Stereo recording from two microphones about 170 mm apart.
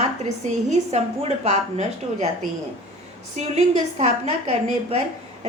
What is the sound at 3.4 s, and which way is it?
A woman's voice, 40° right (ahead or behind).